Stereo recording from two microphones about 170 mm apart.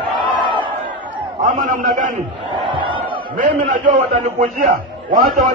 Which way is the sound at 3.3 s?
45° right (ahead or behind).